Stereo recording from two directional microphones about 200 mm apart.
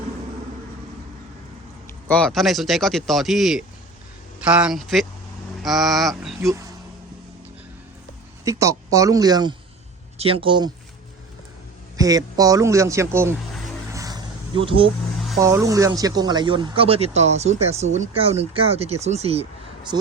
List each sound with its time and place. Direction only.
2.0 s speech: 5° left (ahead or behind)
6.4 s speech: 15° right (ahead or behind)
8.4 s a man's voice: 15° right (ahead or behind)
11.9 s a man's voice: 15° right (ahead or behind)
13.9 s a sound: 20° right (ahead or behind)
15.4 s speech: 15° right (ahead or behind); by 19.5 s 30° right (ahead or behind)